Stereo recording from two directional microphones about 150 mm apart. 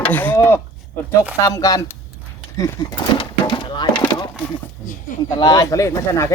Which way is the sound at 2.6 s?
30° left (ahead or behind).